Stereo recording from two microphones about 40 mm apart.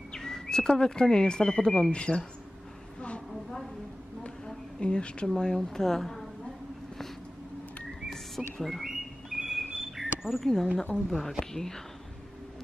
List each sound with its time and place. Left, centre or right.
0.1 s speech: centre
4.7 s a woman's voice: left
8.1 s bird: centre
8.8 s bird: centre
10.4 s speech: centre